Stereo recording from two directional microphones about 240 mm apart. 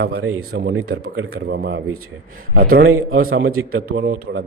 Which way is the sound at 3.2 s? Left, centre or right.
Right.